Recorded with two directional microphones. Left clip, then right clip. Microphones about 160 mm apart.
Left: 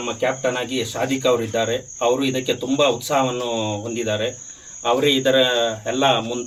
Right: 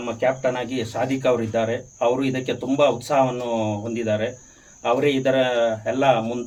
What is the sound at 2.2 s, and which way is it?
Speech, 60° right (ahead or behind).